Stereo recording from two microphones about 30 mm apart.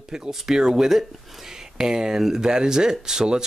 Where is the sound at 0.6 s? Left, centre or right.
Right.